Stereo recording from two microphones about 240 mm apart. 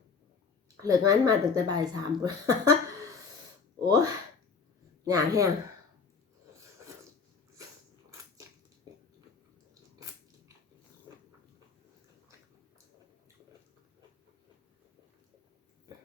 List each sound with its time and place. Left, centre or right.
0.8 s speech: centre
3.8 s speech: centre